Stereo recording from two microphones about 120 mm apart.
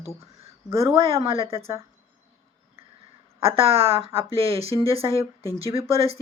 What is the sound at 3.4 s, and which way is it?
A woman's voice, 50° right (ahead or behind).